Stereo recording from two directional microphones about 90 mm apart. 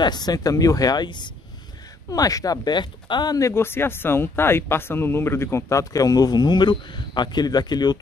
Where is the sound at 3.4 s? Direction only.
30° left (ahead or behind).